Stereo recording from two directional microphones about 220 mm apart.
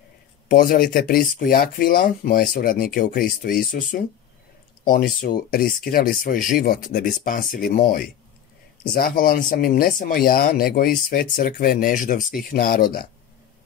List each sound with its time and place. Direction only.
0.5 s speech: 40° left (ahead or behind)